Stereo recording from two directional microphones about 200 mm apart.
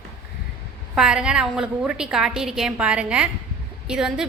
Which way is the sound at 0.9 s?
5° right (ahead or behind).